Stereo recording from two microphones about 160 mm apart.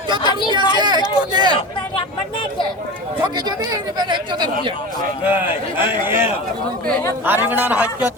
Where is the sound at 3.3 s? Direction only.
25° right (ahead or behind).